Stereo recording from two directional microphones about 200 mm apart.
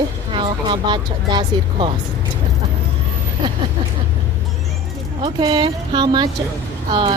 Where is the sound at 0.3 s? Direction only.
25° right (ahead or behind).